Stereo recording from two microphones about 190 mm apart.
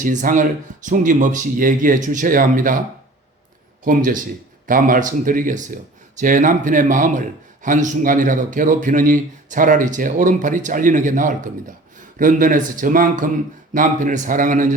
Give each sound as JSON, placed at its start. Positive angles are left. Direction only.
{"t": 0.0, "sound": "a man's voice", "side_deg": -40}
{"t": 3.8, "sound": "a man's voice", "side_deg": -45}